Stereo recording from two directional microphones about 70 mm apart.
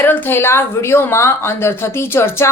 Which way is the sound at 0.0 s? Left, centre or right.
Left.